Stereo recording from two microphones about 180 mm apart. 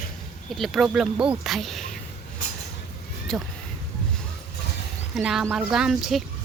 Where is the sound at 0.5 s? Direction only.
Centre (ahead or behind).